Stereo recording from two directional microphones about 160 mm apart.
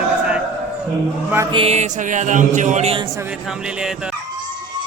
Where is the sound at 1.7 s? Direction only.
50° right (ahead or behind).